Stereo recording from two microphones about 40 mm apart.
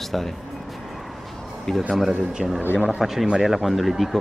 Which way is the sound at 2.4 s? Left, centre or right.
Centre.